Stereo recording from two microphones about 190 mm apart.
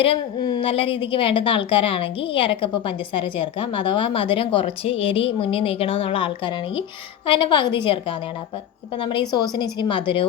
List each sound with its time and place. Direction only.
0.0 s a woman's voice: 25° left (ahead or behind)
9.0 s a woman's voice: 25° left (ahead or behind)